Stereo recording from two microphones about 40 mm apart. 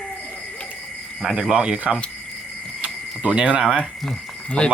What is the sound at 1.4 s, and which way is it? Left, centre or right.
Speech, right.